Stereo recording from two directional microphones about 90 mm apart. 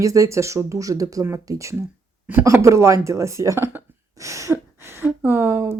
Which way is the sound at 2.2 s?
25° right (ahead or behind).